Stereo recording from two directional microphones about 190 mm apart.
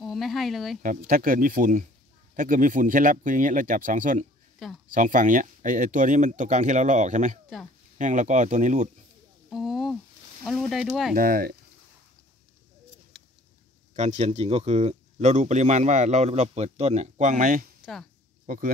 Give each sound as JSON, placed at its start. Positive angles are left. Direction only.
{"t": 0.0, "sound": "speech", "side_deg": 0}
{"t": 0.8, "sound": "speech", "side_deg": -50}
{"t": 4.6, "sound": "speech", "side_deg": 0}
{"t": 4.9, "sound": "speech", "side_deg": -45}
{"t": 9.5, "sound": "a sound", "side_deg": 0}
{"t": 10.4, "sound": "speech", "side_deg": 0}
{"t": 11.1, "sound": "speech", "side_deg": -50}
{"t": 13.9, "sound": "speech", "side_deg": -35}